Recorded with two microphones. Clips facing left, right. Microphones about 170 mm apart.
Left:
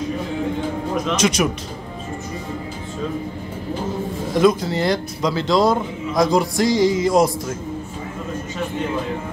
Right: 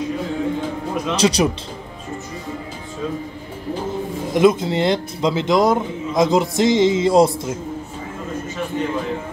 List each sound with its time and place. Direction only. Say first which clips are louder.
1.1 s a man's voice: right 3 dB; 35° right (ahead or behind)
4.3 s a man's voice: right 1 dB; 20° right (ahead or behind)